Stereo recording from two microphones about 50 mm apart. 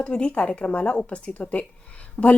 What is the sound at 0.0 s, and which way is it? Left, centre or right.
Speech, left.